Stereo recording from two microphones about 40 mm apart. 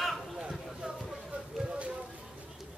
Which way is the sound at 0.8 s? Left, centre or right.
Right.